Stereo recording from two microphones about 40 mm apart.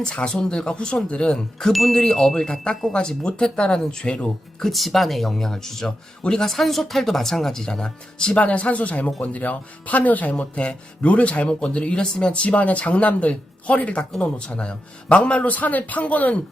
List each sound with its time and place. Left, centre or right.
0.0 s speech: left
1.7 s speech: centre
4.6 s speech: centre
5.4 s speech: centre
8.4 s a man's voice: left
10.5 s a man's voice: left